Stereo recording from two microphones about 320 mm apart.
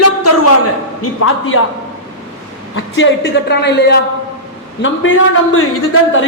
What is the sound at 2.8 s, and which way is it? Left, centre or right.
Speech, left.